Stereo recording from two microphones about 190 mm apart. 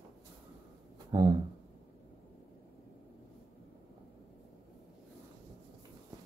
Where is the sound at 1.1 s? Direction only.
20° right (ahead or behind).